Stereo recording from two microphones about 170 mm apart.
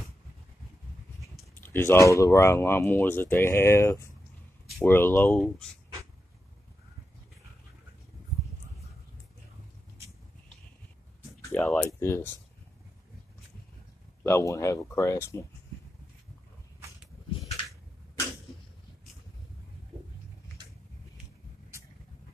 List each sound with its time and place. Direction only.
1.6 s speech: 15° left (ahead or behind)
11.5 s speech: 10° left (ahead or behind)
14.2 s speech: 15° left (ahead or behind)